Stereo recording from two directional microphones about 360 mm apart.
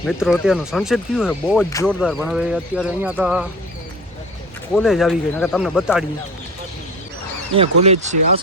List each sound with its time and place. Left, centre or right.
0.0 s speech: centre
4.7 s speech: centre
7.5 s speech: centre